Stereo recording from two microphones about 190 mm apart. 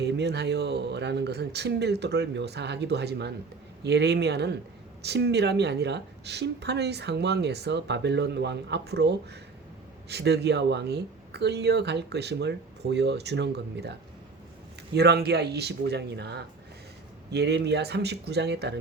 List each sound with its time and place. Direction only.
0.0 s a woman's voice: 60° right (ahead or behind)
14.9 s a woman's voice: 60° right (ahead or behind)